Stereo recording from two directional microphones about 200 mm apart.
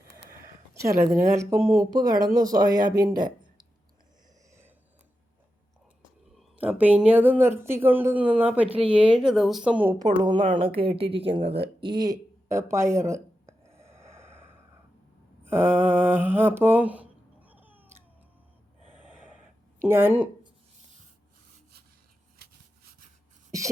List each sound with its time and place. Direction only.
0.7 s a sound: 15° right (ahead or behind)
1.1 s speech: 15° right (ahead or behind)
6.3 s speech: 10° right (ahead or behind)
10.2 s speech: 25° right (ahead or behind)
11.4 s a sound: 30° right (ahead or behind); by 14.4 s 10° right (ahead or behind)
15.4 s speech: 10° right (ahead or behind)
16.6 s cat: 10° right (ahead or behind)
18.9 s gasp: 10° right (ahead or behind)
19.9 s speech: 10° right (ahead or behind)
22.4 s a sound: 50° right (ahead or behind)